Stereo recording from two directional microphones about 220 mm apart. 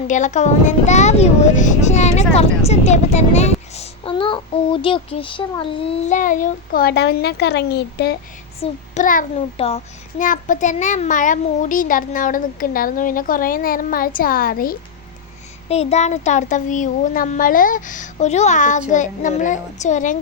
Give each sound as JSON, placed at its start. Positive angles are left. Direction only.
{"t": 0.1, "sound": "a child's voice", "side_deg": 35}
{"t": 8.6, "sound": "a child's voice", "side_deg": 35}
{"t": 15.7, "sound": "a child's voice", "side_deg": 30}